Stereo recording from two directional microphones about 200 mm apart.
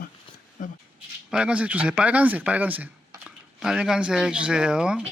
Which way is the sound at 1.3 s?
5° right (ahead or behind).